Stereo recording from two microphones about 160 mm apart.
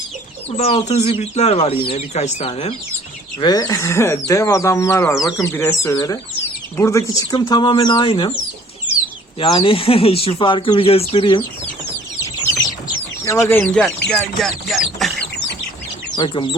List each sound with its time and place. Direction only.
0.5 s speech: 40° left (ahead or behind)
3.4 s speech: 25° left (ahead or behind)
9.4 s speech: 35° left (ahead or behind)
13.2 s speech: 15° left (ahead or behind)
14.1 s a sound: 5° left (ahead or behind)
16.1 s speech: 30° left (ahead or behind)